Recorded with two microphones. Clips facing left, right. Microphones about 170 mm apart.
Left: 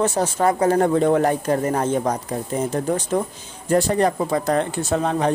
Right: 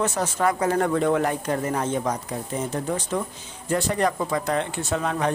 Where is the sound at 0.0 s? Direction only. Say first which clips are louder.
Left 4 dB; 30° left (ahead or behind).